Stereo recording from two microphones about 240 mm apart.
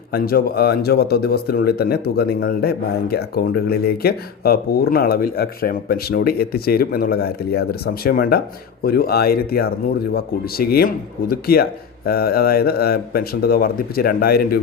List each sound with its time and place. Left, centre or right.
0.1 s speech: left